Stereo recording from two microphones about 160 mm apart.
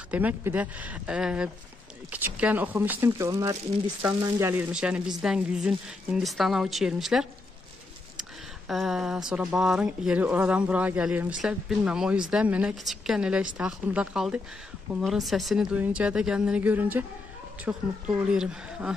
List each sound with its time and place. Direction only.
0.1 s speech: 10° right (ahead or behind)
4.7 s speech: 5° right (ahead or behind)